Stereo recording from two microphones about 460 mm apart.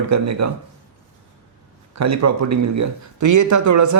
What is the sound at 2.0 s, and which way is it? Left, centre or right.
Speech, right.